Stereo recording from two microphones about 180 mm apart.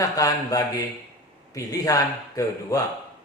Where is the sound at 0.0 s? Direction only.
20° left (ahead or behind).